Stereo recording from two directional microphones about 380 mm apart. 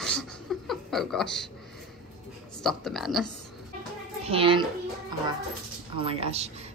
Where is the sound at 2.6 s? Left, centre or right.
Centre.